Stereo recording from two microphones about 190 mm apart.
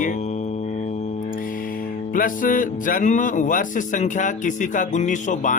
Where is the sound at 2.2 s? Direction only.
45° left (ahead or behind).